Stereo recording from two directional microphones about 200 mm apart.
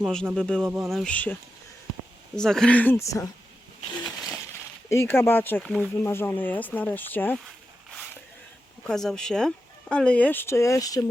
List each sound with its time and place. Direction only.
0.0 s speech: 5° left (ahead or behind)
4.9 s speech: 15° left (ahead or behind)
8.9 s speech: centre (ahead or behind); by 11.0 s 15° left (ahead or behind)